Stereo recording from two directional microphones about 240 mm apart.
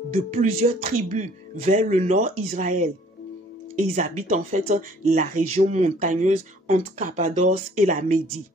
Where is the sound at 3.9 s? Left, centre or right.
Right.